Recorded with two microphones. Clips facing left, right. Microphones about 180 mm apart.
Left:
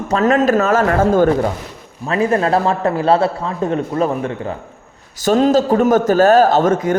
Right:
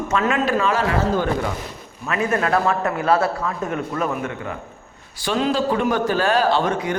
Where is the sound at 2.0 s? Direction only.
30° left (ahead or behind).